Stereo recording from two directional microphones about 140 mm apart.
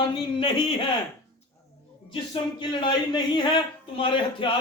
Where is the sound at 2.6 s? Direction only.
35° left (ahead or behind).